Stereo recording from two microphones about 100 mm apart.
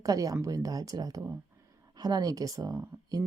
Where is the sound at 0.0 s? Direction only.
35° right (ahead or behind).